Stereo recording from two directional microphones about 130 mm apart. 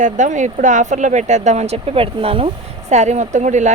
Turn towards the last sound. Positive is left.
turn(degrees=-65)  # may be behind; listen again after turning